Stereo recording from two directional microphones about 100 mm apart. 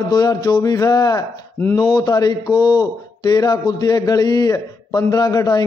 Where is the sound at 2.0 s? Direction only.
40° left (ahead or behind).